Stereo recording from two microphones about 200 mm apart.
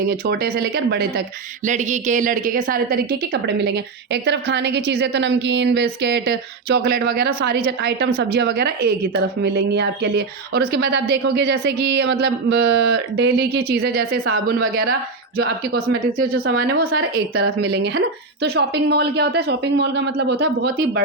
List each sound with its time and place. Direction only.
0.1 s a woman's voice: 45° right (ahead or behind)
1.6 s a woman's voice: 35° right (ahead or behind)
15.7 s a woman's voice: 50° right (ahead or behind)
16.2 s speech: 90° right
16.6 s a woman's voice: 50° right (ahead or behind)